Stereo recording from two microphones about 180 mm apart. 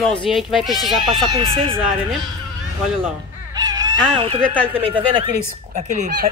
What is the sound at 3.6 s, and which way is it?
Fowl, 20° right (ahead or behind).